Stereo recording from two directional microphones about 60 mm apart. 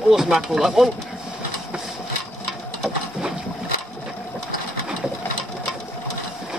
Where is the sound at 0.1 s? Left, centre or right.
Centre.